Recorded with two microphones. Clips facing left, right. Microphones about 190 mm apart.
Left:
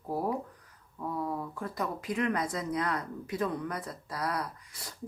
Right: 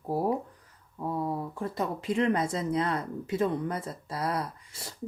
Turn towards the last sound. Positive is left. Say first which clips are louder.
# right 2 dB
turn(degrees=-25)  # may be behind; listen again after turning